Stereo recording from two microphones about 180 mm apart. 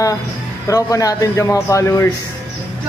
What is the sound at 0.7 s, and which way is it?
Speech, 20° left (ahead or behind).